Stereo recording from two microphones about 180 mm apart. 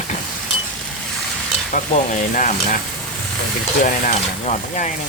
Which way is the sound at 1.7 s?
50° left (ahead or behind).